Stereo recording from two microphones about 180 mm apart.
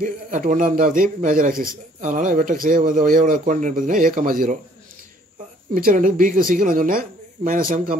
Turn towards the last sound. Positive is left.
turn(degrees=-50)  # may be behind; listen again after turning